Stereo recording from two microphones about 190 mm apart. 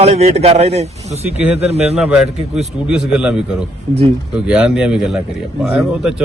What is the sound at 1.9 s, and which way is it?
A man's voice, 5° right (ahead or behind).